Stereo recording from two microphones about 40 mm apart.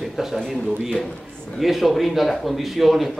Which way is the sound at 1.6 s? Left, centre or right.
Centre.